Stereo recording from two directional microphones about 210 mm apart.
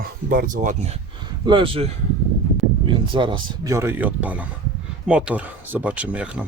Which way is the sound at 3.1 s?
25° right (ahead or behind).